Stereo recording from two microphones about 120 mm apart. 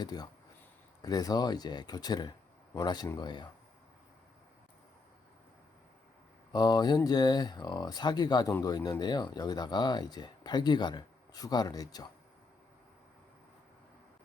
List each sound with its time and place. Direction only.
0.0 s speech: 35° left (ahead or behind)
6.5 s speech: 35° left (ahead or behind)